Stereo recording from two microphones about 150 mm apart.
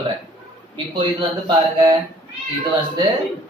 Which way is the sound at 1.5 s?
25° right (ahead or behind).